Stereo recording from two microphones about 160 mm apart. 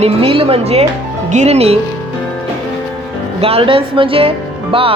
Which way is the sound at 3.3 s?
35° right (ahead or behind).